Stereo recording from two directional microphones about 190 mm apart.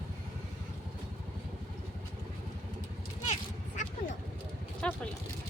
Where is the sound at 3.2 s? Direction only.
35° left (ahead or behind).